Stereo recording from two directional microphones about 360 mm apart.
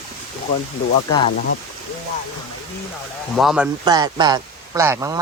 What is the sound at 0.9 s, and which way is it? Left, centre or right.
Speech, centre.